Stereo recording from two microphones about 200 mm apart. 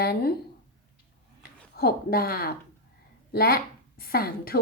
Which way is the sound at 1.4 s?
50° left (ahead or behind).